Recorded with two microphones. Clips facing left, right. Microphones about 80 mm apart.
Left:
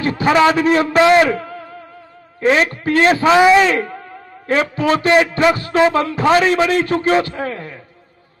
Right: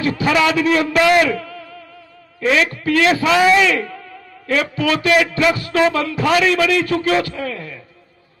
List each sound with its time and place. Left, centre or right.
0.0 s a man's voice: left
1.3 s a sound: left
2.4 s a man's voice: left
3.2 s a man's voice: left
3.6 s a man's voice: left